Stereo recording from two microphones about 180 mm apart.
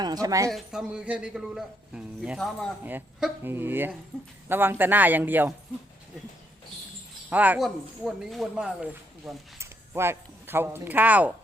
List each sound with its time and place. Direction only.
0.0 s a woman's voice: 20° right (ahead or behind)
0.5 s a man's voice: 5° right (ahead or behind)
7.3 s a man's voice: 10° right (ahead or behind)